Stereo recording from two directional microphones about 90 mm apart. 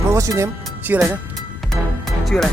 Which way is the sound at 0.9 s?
20° right (ahead or behind).